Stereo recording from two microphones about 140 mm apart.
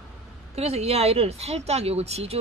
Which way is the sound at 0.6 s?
45° right (ahead or behind).